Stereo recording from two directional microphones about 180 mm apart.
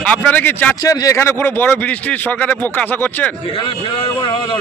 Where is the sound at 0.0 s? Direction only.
5° left (ahead or behind).